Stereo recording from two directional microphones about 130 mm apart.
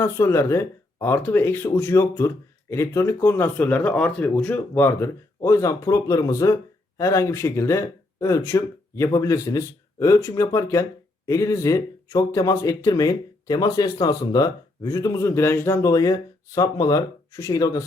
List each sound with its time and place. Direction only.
0.0 s speech: 20° left (ahead or behind)